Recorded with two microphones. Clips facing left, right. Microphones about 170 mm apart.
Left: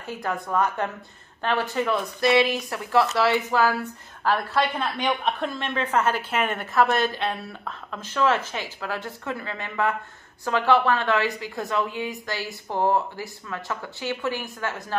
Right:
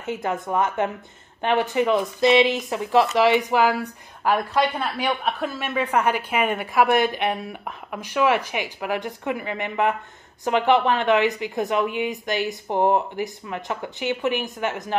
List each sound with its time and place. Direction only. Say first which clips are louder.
0.0 s a woman's voice: right 3 dB; 20° right (ahead or behind)